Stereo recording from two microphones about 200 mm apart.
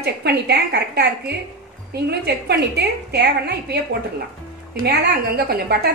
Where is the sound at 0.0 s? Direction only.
55° right (ahead or behind).